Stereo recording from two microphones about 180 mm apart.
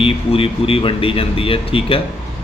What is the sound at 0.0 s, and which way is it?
Speech, 30° left (ahead or behind).